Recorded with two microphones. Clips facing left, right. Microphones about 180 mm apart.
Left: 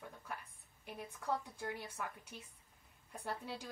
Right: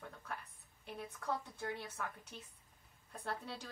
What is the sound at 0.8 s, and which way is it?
Speech, 10° left (ahead or behind).